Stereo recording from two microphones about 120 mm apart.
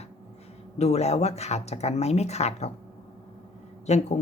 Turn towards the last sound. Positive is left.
turn(degrees=75)  # may be behind; listen again after turning